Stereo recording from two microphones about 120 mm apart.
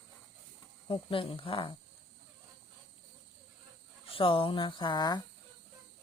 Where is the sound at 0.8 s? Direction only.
45° left (ahead or behind).